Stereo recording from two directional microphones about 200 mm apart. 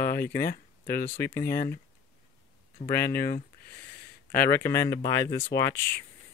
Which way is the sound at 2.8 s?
15° left (ahead or behind).